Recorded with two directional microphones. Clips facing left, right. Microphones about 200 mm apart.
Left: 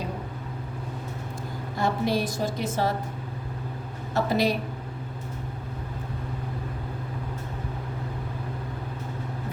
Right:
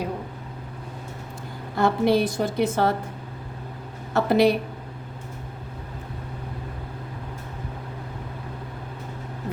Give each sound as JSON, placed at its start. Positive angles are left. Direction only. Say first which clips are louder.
{"t": 1.8, "sound": "a woman's voice", "louder": "right 5 dB", "side_deg": -60}
{"t": 4.1, "sound": "a woman's voice", "louder": "right 5 dB", "side_deg": -60}